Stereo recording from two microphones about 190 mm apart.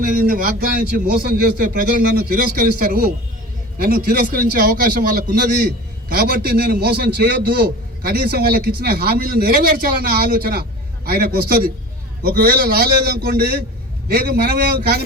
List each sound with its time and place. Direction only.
0.0 s a man's voice: 50° right (ahead or behind)